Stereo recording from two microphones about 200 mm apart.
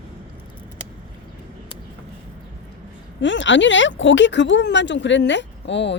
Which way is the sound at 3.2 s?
65° left (ahead or behind).